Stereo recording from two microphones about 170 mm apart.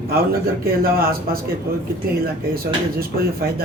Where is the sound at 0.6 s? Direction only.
60° right (ahead or behind).